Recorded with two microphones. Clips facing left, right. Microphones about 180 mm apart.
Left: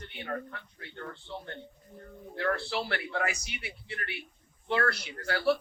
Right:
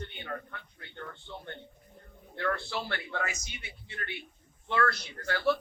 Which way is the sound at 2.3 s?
35° left (ahead or behind).